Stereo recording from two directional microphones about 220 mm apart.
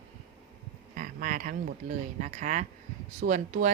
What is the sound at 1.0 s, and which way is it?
Speech, 40° right (ahead or behind).